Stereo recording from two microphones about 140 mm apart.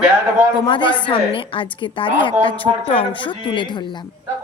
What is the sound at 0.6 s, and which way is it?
A woman's voice, 35° left (ahead or behind).